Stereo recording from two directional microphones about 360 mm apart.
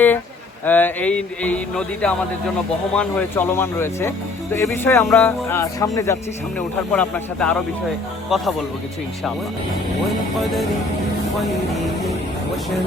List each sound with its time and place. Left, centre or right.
0.6 s a man's voice: centre